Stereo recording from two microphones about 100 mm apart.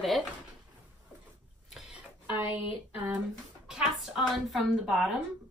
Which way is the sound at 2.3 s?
20° right (ahead or behind).